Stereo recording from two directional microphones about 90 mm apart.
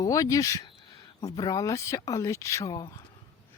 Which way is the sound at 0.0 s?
40° left (ahead or behind).